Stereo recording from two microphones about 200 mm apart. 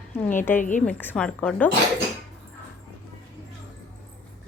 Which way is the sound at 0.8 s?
10° left (ahead or behind).